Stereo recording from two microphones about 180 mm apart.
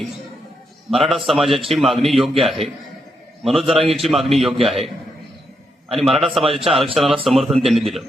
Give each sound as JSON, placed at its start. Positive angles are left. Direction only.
{"t": 0.9, "sound": "speech", "side_deg": 0}
{"t": 3.8, "sound": "speech", "side_deg": -30}
{"t": 4.0, "sound": "speech", "side_deg": 0}
{"t": 5.9, "sound": "speech", "side_deg": 0}
{"t": 6.4, "sound": "speech", "side_deg": -30}
{"t": 6.9, "sound": "speech", "side_deg": 0}